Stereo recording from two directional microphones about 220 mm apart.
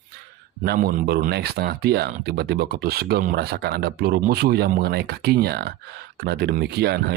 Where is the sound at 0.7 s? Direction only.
45° right (ahead or behind).